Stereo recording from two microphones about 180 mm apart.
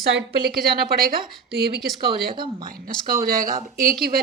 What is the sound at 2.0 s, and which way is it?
Speech, 25° right (ahead or behind).